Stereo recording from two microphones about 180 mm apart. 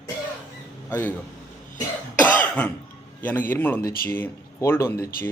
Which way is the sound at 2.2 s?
10° left (ahead or behind).